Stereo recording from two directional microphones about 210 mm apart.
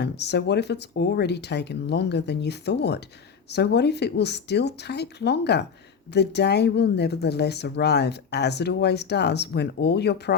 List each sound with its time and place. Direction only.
0.0 s speech: 55° left (ahead or behind)